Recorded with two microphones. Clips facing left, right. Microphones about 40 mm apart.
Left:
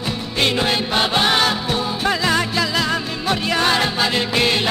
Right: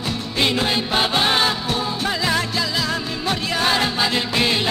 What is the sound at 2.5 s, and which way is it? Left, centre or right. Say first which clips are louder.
Music: left 3 dB; centre.